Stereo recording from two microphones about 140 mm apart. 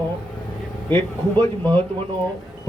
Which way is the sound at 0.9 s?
15° left (ahead or behind).